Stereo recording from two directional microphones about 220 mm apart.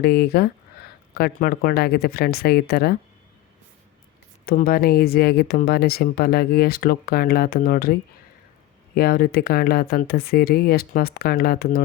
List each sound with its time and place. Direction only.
0.0 s speech: 45° left (ahead or behind)
4.4 s speech: 40° left (ahead or behind)
9.0 s speech: 45° left (ahead or behind)